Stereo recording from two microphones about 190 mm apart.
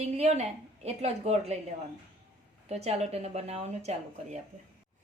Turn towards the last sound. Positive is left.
turn(degrees=-35)  # may be behind; listen again after turning